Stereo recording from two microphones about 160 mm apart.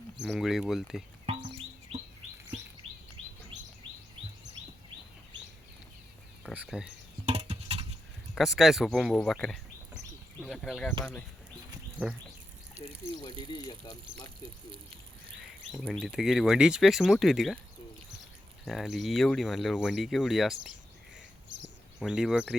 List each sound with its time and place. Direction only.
0.3 s speech: centre (ahead or behind)
2.8 s patter: 5° left (ahead or behind)
6.5 s speech: 5° right (ahead or behind)
7.3 s patter: 40° right (ahead or behind)
8.4 s speech: centre (ahead or behind)
13.4 s speech: 25° left (ahead or behind)
15.7 s speech: centre (ahead or behind)
18.6 s speech: centre (ahead or behind)
22.0 s speech: 5° right (ahead or behind)